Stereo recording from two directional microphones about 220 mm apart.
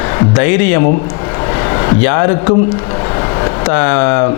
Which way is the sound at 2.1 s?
20° left (ahead or behind).